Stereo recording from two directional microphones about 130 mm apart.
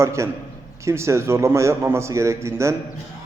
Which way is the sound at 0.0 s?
20° right (ahead or behind).